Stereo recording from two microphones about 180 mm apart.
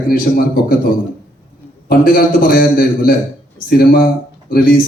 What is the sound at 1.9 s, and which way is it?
A man's voice, 55° left (ahead or behind).